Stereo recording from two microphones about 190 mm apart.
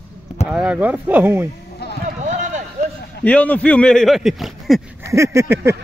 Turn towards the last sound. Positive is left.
turn(degrees=-15)  # may be behind; listen again after turning